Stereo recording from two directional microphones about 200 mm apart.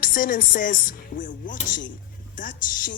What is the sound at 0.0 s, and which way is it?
Speech, 45° left (ahead or behind).